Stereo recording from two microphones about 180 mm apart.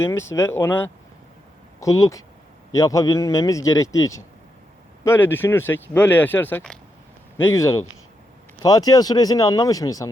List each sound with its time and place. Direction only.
0.0 s speech: 15° left (ahead or behind)